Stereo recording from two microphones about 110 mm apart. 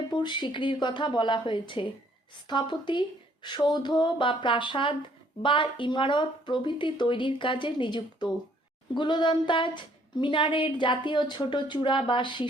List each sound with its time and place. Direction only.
0.1 s speech: 45° left (ahead or behind)